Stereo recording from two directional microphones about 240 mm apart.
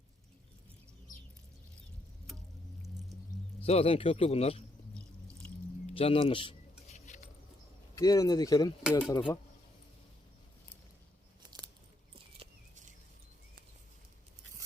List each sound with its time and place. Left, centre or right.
3.6 s speech: left
5.8 s a sound: left
7.9 s speech: centre
8.8 s speech: centre
9.0 s speech: centre